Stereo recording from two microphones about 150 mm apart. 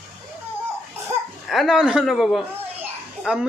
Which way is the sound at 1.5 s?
Centre (ahead or behind).